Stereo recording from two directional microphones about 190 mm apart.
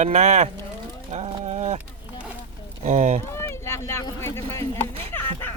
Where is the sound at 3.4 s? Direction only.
15° left (ahead or behind).